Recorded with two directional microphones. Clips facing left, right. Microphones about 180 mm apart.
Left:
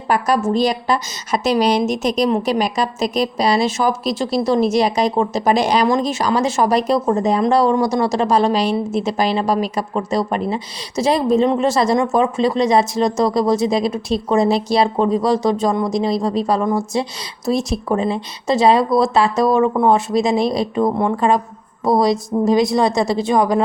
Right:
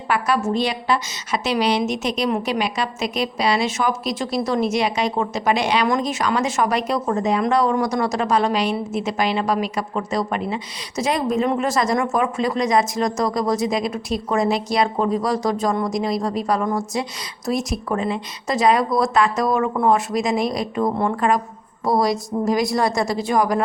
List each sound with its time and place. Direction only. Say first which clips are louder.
0.1 s a woman's voice: left 4 dB; 40° left (ahead or behind); by 23.6 s 25° left (ahead or behind)